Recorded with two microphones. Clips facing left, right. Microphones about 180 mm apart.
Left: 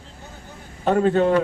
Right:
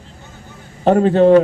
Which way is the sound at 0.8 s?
35° right (ahead or behind).